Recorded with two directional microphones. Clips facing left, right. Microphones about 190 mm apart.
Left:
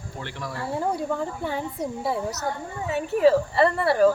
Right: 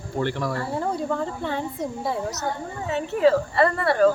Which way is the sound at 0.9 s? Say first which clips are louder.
Right 1 dB; 10° left (ahead or behind).